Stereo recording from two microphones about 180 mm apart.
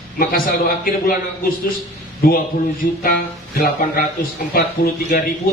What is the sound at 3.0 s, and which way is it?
Speech, 55° left (ahead or behind).